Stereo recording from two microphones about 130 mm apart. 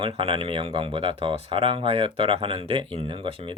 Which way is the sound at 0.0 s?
45° right (ahead or behind).